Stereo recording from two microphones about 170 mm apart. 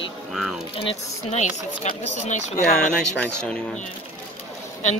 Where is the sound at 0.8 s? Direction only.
35° left (ahead or behind).